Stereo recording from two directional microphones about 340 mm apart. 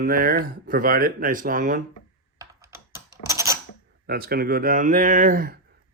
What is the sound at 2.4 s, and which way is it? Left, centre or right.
Computer keyboard, centre.